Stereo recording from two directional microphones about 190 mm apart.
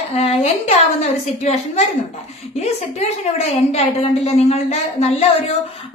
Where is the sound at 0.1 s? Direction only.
35° left (ahead or behind).